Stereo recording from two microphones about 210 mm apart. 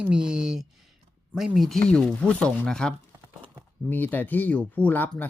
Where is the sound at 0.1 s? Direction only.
5° right (ahead or behind).